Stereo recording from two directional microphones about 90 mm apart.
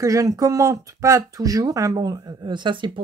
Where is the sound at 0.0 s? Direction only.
40° right (ahead or behind).